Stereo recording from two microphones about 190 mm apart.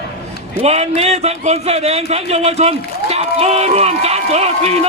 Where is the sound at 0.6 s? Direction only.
35° right (ahead or behind).